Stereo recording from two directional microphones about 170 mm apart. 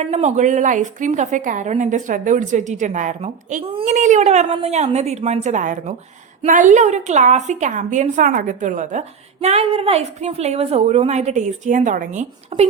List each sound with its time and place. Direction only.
0.0 s a woman's voice: 40° right (ahead or behind)
3.8 s a woman's voice: 45° right (ahead or behind)
12.5 s speech: 40° right (ahead or behind)